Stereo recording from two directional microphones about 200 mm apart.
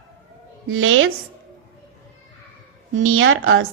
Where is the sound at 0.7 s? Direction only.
85° right.